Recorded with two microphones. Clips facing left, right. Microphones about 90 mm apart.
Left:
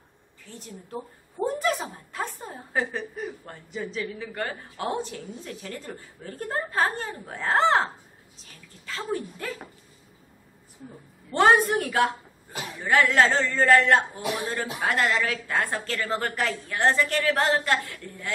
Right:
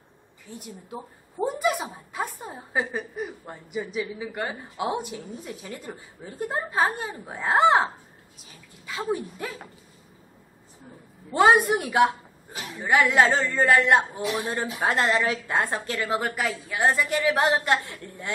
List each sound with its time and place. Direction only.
0.5 s a woman's voice: 10° right (ahead or behind)
11.3 s a woman's voice: 10° right (ahead or behind)